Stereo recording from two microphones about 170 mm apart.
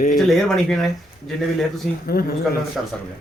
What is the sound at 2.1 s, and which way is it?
Speech, 60° left (ahead or behind).